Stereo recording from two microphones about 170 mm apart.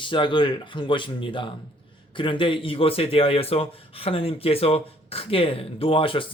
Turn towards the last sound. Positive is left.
turn(degrees=30)  # may be behind; listen again after turning